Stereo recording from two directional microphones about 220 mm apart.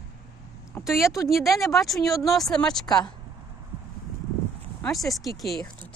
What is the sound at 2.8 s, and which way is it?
Speech, 15° left (ahead or behind).